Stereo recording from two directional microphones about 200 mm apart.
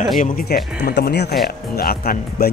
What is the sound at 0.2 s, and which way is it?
Speech, 45° left (ahead or behind).